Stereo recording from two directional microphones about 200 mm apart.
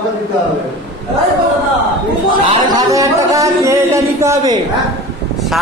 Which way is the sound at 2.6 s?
20° right (ahead or behind).